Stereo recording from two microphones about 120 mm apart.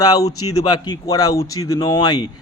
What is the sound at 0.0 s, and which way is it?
Speech, 30° left (ahead or behind).